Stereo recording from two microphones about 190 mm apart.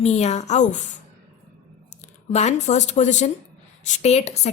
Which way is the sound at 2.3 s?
35° left (ahead or behind).